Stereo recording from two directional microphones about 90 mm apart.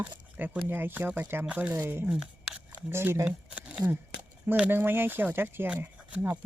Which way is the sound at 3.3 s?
15° right (ahead or behind).